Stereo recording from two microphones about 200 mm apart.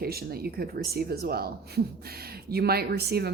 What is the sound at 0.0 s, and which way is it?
Speech, 50° right (ahead or behind).